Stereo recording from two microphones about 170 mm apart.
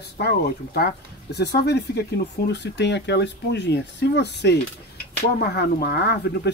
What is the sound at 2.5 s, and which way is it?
Speech, 90° left.